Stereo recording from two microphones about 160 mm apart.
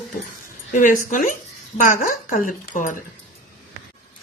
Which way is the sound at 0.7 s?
50° left (ahead or behind).